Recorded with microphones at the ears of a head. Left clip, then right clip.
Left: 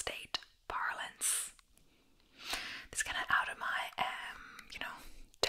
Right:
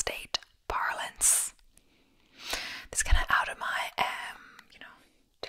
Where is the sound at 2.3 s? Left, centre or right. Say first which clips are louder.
Right 5 dB; right.